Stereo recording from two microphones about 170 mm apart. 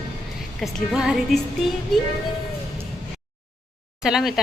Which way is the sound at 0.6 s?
Centre (ahead or behind).